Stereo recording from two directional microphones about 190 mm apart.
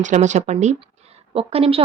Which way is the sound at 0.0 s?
40° right (ahead or behind).